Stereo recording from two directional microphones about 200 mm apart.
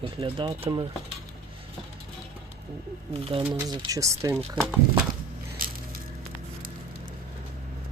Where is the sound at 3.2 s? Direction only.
30° right (ahead or behind).